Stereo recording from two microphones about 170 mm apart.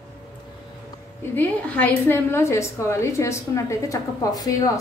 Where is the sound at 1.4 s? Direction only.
10° left (ahead or behind).